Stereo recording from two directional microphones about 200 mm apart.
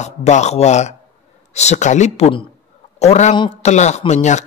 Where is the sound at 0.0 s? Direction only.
35° left (ahead or behind).